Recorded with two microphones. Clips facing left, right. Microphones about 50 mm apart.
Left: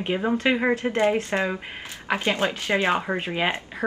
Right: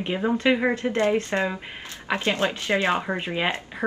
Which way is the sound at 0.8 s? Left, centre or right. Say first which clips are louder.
Even; left.